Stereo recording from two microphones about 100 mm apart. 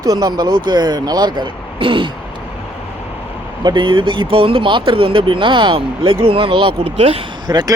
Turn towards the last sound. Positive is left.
turn(degrees=-40)  # may be behind; listen again after turning